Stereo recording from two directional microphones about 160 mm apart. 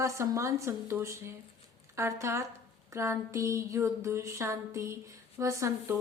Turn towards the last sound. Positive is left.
turn(degrees=-20)  # may be behind; listen again after turning